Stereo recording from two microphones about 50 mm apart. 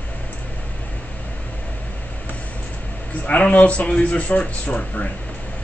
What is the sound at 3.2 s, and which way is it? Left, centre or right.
A man's voice, left.